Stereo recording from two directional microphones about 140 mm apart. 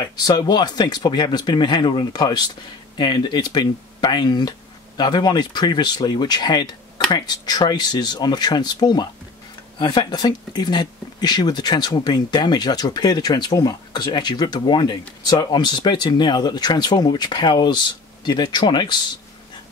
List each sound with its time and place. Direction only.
0.0 s speech: 30° left (ahead or behind)